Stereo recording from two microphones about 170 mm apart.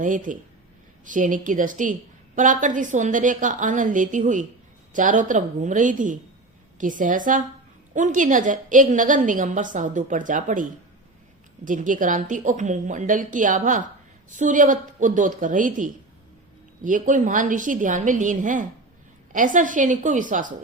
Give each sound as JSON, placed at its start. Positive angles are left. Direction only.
{"t": 0.0, "sound": "a woman's voice", "side_deg": -50}